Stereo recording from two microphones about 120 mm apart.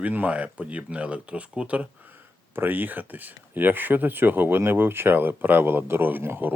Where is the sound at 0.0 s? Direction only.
10° right (ahead or behind).